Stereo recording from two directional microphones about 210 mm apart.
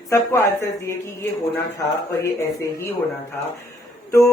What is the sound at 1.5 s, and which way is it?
Speech, 10° left (ahead or behind).